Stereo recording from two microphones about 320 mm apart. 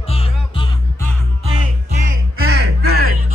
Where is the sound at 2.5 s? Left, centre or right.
Right.